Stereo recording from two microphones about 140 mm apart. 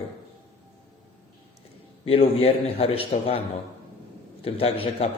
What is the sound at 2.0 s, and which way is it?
A man's voice, 45° left (ahead or behind).